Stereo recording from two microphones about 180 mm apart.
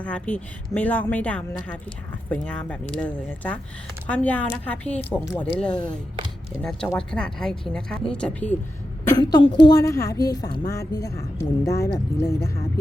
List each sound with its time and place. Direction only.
0.0 s speech: 5° left (ahead or behind)
9.0 s a woman's voice: 20° left (ahead or behind)